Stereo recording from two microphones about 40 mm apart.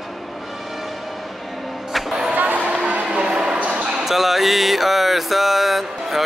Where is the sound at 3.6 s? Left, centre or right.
Right.